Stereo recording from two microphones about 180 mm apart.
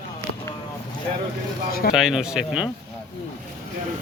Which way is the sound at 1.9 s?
5° right (ahead or behind).